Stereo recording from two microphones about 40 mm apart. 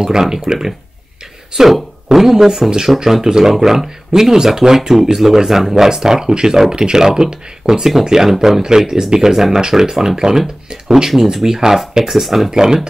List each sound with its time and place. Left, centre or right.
0.0 s speech: centre
12.4 s speech: centre